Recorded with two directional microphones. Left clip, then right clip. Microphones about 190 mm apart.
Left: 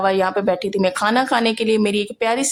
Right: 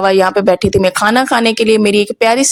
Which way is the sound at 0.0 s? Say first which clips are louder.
Right 7 dB; 35° right (ahead or behind).